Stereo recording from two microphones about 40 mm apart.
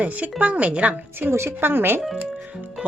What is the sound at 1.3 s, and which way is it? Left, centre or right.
Speech, right.